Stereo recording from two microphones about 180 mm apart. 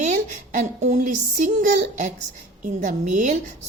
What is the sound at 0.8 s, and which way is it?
A woman's voice, 45° right (ahead or behind).